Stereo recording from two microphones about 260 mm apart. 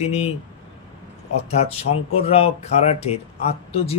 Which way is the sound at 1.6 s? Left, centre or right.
Left.